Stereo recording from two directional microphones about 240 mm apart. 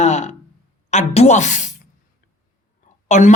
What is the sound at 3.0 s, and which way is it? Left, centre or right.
Speech, left.